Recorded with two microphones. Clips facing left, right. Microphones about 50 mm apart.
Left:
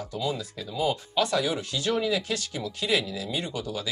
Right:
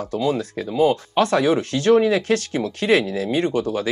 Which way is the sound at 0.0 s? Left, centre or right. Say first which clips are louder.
Right 9 dB; right.